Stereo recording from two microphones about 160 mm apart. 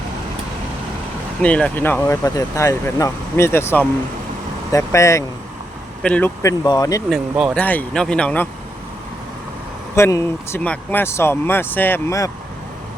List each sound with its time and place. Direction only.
1.4 s speech: 5° left (ahead or behind)
6.0 s speech: 10° left (ahead or behind)
6.4 s speech: 20° left (ahead or behind)
7.1 s speech: centre (ahead or behind)
7.6 s speech: 10° left (ahead or behind)
9.9 s speech: 20° left (ahead or behind)